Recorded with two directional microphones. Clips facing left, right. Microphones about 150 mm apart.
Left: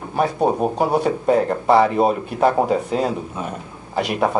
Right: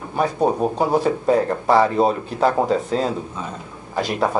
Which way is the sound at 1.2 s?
25° left (ahead or behind).